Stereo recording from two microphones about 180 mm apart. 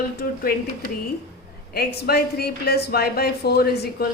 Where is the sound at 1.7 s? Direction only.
60° left (ahead or behind).